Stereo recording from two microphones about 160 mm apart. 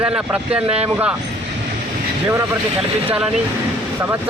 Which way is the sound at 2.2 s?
15° right (ahead or behind).